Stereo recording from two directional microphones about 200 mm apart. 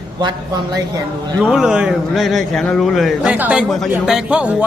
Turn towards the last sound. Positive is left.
turn(degrees=-5)  # may be behind; listen again after turning